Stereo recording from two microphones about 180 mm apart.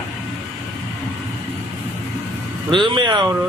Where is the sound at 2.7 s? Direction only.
25° right (ahead or behind).